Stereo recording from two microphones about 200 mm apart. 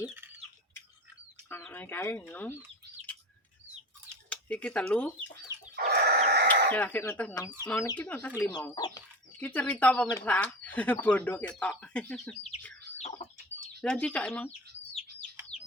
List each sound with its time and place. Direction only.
0.0 s a sound: 10° right (ahead or behind)
1.5 s speech: 10° left (ahead or behind)
4.1 s speech: 5° left (ahead or behind)
5.7 s chicken: 50° right (ahead or behind)
6.7 s speech: 10° left (ahead or behind)
8.7 s speech: 20° left (ahead or behind)
9.4 s speech: 5° left (ahead or behind)
13.8 s speech: 5° left (ahead or behind)